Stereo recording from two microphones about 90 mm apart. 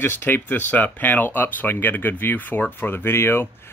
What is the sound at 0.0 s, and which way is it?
Speech, 25° left (ahead or behind).